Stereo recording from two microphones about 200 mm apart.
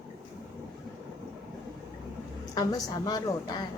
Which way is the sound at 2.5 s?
20° left (ahead or behind).